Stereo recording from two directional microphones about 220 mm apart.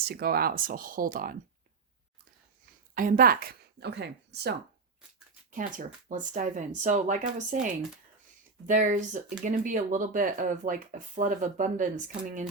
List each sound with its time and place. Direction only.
0.0 s speech: 45° right (ahead or behind)
2.9 s speech: 40° right (ahead or behind)
5.5 s speech: 35° right (ahead or behind)